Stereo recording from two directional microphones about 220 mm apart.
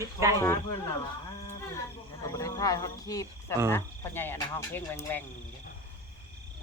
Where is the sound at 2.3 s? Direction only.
15° left (ahead or behind).